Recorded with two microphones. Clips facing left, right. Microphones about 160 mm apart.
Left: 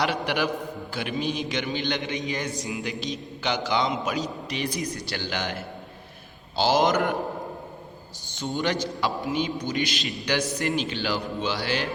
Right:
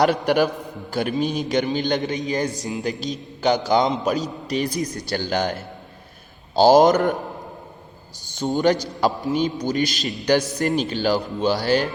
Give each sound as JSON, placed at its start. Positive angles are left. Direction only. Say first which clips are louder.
{"t": 0.0, "sound": "a man's voice", "louder": "right 7 dB", "side_deg": -45}
{"t": 8.4, "sound": "a man's voice", "louder": "right 7 dB", "side_deg": -40}